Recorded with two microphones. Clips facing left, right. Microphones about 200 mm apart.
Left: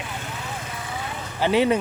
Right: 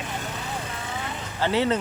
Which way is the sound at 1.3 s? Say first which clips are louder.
Left 3 dB; 15° left (ahead or behind).